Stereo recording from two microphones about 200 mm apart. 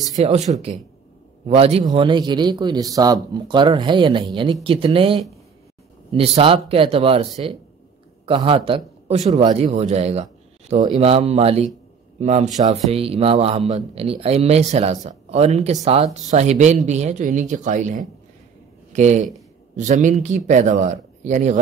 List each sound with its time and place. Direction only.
0.1 s a man's voice: 35° right (ahead or behind)